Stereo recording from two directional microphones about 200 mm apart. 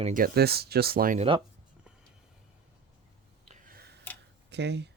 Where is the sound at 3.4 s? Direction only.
50° right (ahead or behind).